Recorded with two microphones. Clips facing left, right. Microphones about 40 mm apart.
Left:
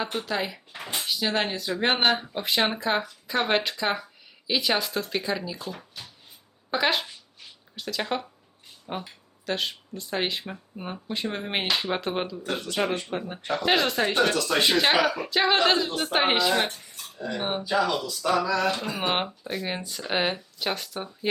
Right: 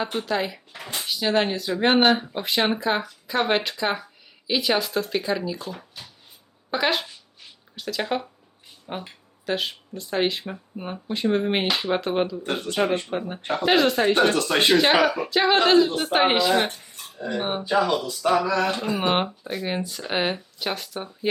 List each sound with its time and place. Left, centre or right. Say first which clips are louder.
0.0 s speech: right 3 dB; centre
0.7 s a sound: even; centre
1.0 s speech: right 5 dB; centre
13.4 s a sound: right 2 dB; right
13.7 s speech: right 5 dB; centre
15.9 s speech: right 3 dB; centre
16.1 s speech: right 3 dB; centre
16.9 s dishes: right 2 dB; right
17.3 s speech: right 3 dB; centre
17.7 s speech: right 3 dB; right
18.0 s a sound: right 3 dB; right
18.9 s speech: right 4 dB; centre